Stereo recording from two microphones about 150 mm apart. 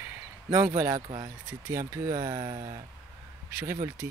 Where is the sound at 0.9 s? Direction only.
30° right (ahead or behind).